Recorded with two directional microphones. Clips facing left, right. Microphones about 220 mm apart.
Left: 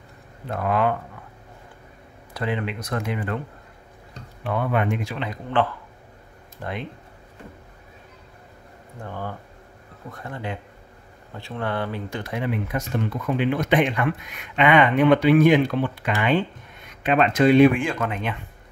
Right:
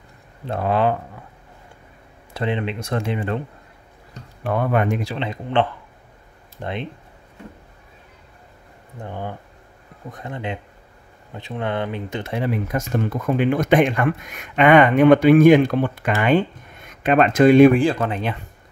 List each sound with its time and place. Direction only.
0.5 s speech: 30° right (ahead or behind)
2.3 s speech: 25° right (ahead or behind)
4.4 s speech: 45° right (ahead or behind)
5.1 s speech: 25° right (ahead or behind)
9.0 s speech: 20° right (ahead or behind)